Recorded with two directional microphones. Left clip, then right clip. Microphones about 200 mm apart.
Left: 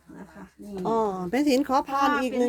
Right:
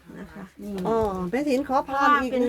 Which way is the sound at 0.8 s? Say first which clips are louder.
Right 1 dB; 25° left (ahead or behind).